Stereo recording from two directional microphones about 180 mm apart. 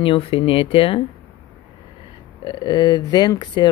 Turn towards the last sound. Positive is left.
turn(degrees=25)  # may be behind; listen again after turning